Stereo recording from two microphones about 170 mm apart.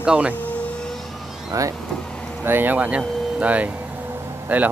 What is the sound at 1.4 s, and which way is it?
Speech, 20° right (ahead or behind).